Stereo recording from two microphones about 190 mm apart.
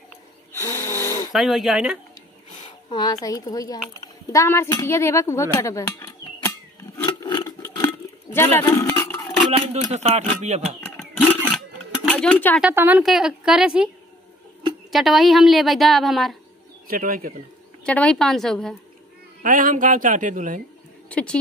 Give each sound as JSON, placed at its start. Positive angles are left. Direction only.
{"t": 0.5, "sound": "snoring", "side_deg": 15}
{"t": 1.3, "sound": "a woman's voice", "side_deg": 0}
{"t": 2.9, "sound": "a woman's voice", "side_deg": 20}
{"t": 7.0, "sound": "a sound", "side_deg": 20}
{"t": 9.9, "sound": "speech", "side_deg": -35}
{"t": 11.5, "sound": "a sound", "side_deg": 5}
{"t": 12.6, "sound": "a woman's voice", "side_deg": -10}
{"t": 14.9, "sound": "a woman's voice", "side_deg": 0}
{"t": 16.8, "sound": "speech", "side_deg": -50}
{"t": 17.8, "sound": "a woman's voice", "side_deg": 5}
{"t": 19.4, "sound": "speech", "side_deg": -45}
{"t": 21.1, "sound": "speech", "side_deg": 5}